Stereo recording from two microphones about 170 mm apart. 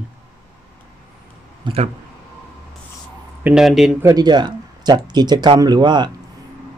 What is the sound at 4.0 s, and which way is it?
Speech, 20° right (ahead or behind).